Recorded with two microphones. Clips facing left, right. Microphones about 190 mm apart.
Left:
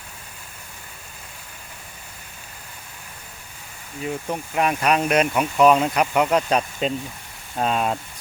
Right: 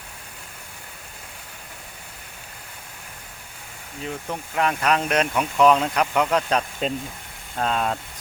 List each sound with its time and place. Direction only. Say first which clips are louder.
4.0 s speech: left 3 dB; 15° left (ahead or behind)